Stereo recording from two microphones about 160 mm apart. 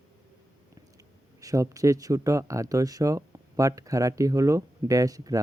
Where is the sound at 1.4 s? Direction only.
20° right (ahead or behind).